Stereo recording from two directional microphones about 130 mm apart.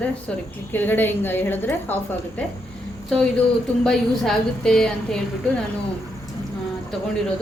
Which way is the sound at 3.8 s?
5° left (ahead or behind).